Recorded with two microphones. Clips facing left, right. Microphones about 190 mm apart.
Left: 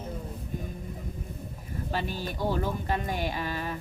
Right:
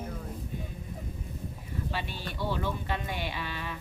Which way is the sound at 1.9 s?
45° left (ahead or behind).